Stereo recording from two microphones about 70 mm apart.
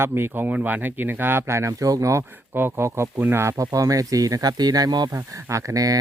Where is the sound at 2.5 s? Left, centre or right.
Right.